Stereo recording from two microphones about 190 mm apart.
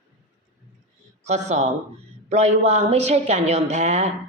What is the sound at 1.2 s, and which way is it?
A woman's voice, 35° right (ahead or behind).